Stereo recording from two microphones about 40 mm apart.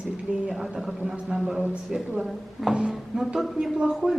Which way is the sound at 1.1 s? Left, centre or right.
Right.